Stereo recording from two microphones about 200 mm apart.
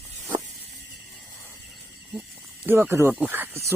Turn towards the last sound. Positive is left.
turn(degrees=-10)  # may be behind; listen again after turning